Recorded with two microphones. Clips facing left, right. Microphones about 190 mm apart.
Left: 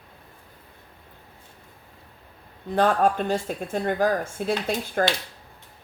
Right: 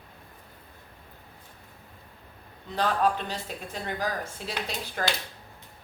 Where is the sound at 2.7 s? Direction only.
50° left (ahead or behind).